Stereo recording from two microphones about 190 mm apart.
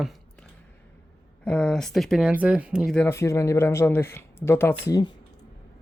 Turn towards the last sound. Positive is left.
turn(degrees=20)  # may be behind; listen again after turning